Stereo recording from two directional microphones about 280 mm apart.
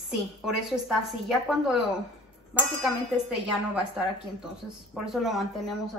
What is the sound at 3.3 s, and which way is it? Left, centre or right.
A woman's voice, centre.